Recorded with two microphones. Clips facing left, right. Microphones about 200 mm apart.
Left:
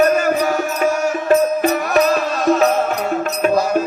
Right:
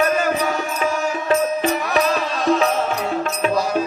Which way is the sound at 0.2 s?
45° left (ahead or behind).